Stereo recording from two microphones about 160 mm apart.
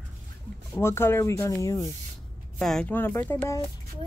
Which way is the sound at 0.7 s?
15° left (ahead or behind).